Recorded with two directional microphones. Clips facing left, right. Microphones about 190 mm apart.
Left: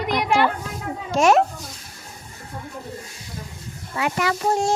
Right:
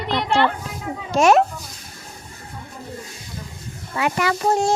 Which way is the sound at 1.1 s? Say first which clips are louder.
Right 2 dB; 65° right (ahead or behind).